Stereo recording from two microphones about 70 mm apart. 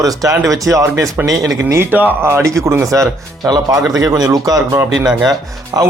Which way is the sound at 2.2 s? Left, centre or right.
Right.